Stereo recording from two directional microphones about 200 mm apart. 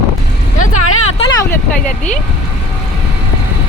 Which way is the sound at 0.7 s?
90° left.